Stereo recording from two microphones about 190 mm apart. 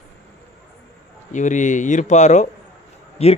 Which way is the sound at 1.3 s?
40° left (ahead or behind).